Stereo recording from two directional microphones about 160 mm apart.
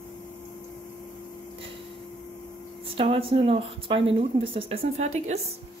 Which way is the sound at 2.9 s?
35° right (ahead or behind).